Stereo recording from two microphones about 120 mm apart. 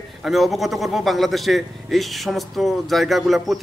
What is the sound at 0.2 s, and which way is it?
A man's voice, centre (ahead or behind).